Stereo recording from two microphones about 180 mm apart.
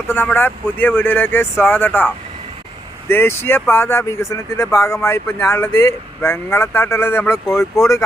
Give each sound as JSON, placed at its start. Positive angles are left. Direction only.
{"t": 0.1, "sound": "speech", "side_deg": 10}